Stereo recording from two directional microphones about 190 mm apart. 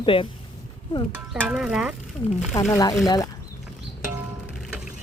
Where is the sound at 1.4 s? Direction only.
5° right (ahead or behind).